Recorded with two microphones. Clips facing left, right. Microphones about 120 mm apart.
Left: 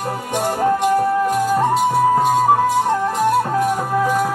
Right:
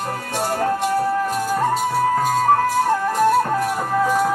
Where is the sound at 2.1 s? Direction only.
15° left (ahead or behind).